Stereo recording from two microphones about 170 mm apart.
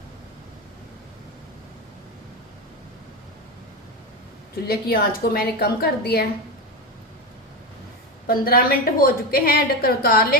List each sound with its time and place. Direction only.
4.6 s a woman's voice: 65° left (ahead or behind)
8.3 s a woman's voice: 60° left (ahead or behind)